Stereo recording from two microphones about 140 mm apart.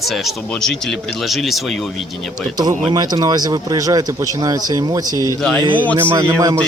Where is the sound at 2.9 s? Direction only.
30° right (ahead or behind).